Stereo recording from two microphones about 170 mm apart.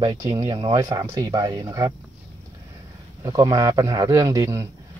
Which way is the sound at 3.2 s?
20° right (ahead or behind).